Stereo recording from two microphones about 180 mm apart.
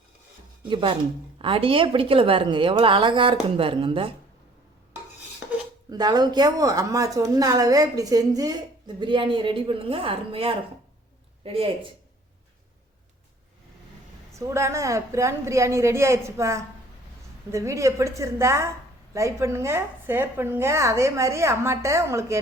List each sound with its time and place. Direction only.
0.7 s a woman's voice: 25° right (ahead or behind)
5.9 s a woman's voice: 20° right (ahead or behind)
14.3 s a woman's voice: 15° right (ahead or behind)